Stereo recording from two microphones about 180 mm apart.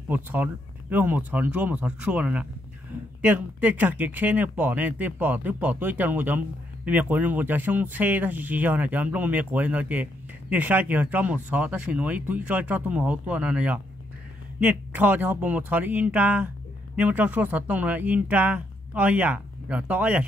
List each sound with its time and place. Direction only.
0.1 s speech: 10° right (ahead or behind)